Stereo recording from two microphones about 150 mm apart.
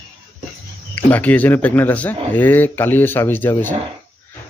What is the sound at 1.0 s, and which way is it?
Speech, 10° left (ahead or behind).